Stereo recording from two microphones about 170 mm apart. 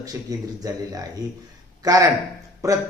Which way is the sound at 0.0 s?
20° right (ahead or behind).